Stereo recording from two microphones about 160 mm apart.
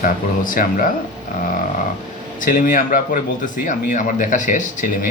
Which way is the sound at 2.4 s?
55° left (ahead or behind).